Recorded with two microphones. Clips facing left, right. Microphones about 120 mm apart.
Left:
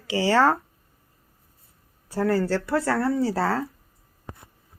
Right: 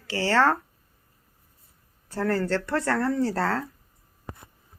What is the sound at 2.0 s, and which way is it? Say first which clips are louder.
Speech: left 3 dB; 10° left (ahead or behind).